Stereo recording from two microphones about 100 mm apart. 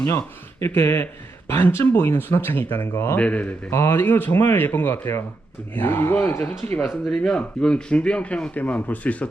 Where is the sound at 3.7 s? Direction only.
25° left (ahead or behind).